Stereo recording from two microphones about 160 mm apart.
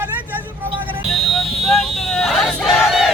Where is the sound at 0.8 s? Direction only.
10° right (ahead or behind).